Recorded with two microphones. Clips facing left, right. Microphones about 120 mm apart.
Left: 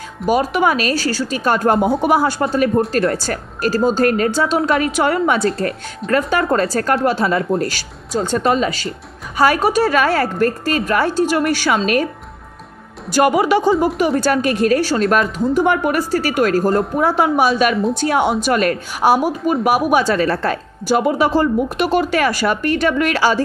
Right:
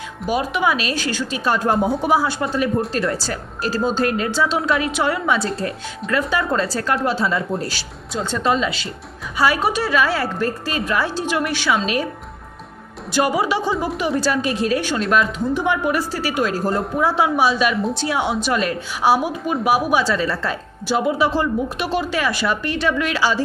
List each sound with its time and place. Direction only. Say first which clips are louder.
0.3 s a woman's voice: left 4 dB; 45° left (ahead or behind)
1.4 s a woman's voice: left 3 dB; 55° left (ahead or behind)
13.2 s a woman's voice: left 5 dB; 55° left (ahead or behind)
14.8 s a woman's voice: left 3 dB; 40° left (ahead or behind)